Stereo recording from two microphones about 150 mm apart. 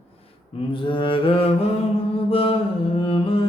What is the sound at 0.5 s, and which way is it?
Mantra, 35° left (ahead or behind).